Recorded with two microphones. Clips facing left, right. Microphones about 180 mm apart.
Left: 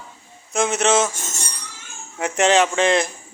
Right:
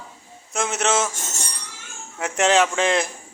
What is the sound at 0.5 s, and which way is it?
Speech, 5° right (ahead or behind).